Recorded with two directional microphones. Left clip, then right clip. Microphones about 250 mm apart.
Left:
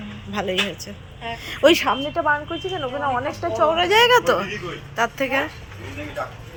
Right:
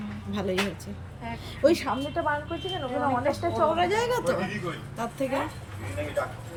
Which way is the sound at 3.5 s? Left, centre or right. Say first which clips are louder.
Left 7 dB; centre.